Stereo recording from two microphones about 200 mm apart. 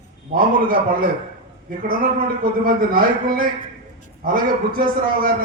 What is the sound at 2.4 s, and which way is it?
A man's voice, 45° right (ahead or behind).